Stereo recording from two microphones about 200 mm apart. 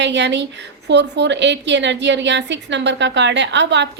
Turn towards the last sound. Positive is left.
turn(degrees=-65)  # may be behind; listen again after turning